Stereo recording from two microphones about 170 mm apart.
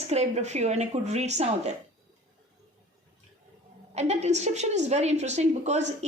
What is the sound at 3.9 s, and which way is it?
A woman's voice, 40° right (ahead or behind).